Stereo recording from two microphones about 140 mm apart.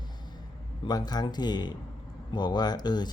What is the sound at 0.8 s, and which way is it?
Speech, 30° left (ahead or behind).